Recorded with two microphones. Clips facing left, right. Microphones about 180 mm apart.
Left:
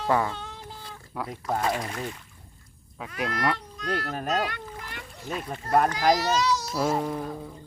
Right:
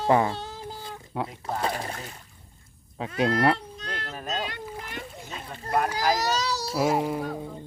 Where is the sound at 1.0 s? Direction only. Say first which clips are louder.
Right 1 dB; 25° right (ahead or behind).